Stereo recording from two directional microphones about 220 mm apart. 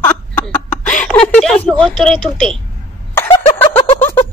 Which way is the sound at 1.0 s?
5° left (ahead or behind).